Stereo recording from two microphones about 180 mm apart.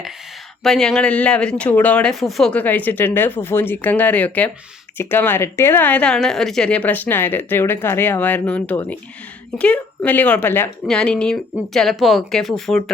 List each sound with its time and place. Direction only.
0.6 s speech: 5° left (ahead or behind)